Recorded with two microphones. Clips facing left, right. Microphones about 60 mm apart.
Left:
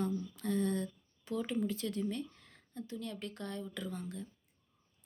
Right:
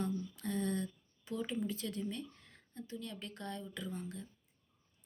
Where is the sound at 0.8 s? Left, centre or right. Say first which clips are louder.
Left 1 dB; left.